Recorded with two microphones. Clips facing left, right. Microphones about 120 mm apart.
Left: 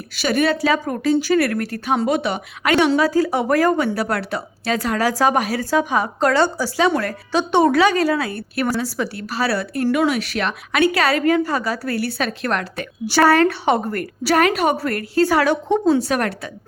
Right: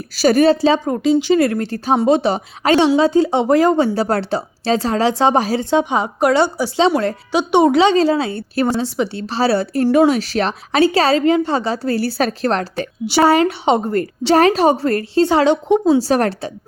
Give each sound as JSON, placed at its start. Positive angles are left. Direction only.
{"t": 0.2, "sound": "a woman's voice", "side_deg": -35}
{"t": 13.1, "sound": "speech", "side_deg": -15}